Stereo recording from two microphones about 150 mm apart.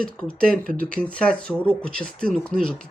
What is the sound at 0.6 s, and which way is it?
Speech, 65° right (ahead or behind).